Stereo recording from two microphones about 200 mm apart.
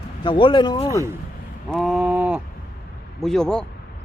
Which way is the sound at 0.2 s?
25° left (ahead or behind).